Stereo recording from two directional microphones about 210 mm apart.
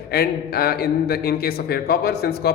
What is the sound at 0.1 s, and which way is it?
A man's voice, 50° left (ahead or behind).